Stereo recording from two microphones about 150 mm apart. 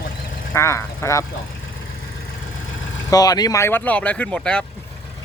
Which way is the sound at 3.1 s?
25° left (ahead or behind).